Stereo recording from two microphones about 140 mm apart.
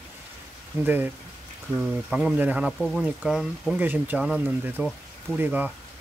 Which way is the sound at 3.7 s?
15° right (ahead or behind).